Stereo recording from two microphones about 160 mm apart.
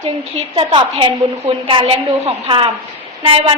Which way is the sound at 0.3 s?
35° right (ahead or behind).